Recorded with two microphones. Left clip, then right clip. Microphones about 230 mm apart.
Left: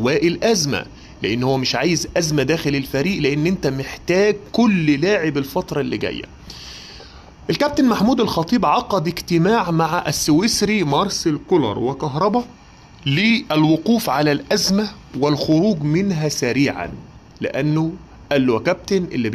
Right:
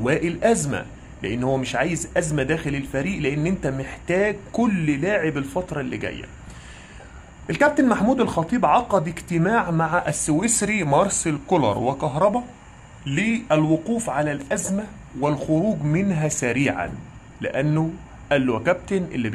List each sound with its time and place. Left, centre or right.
0.0 s speech: centre
7.4 s speech: centre
11.4 s speech: centre
12.0 s speech: centre
13.0 s speech: left
15.9 s speech: centre